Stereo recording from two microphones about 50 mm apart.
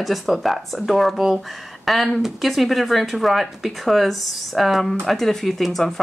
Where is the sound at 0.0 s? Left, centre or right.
Centre.